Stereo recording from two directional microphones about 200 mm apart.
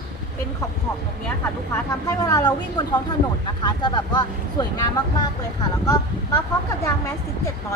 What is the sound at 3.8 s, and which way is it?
Speech, 20° left (ahead or behind).